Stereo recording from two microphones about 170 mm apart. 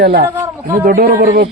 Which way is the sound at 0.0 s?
65° right (ahead or behind).